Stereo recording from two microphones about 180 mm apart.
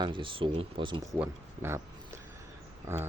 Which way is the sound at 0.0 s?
30° right (ahead or behind).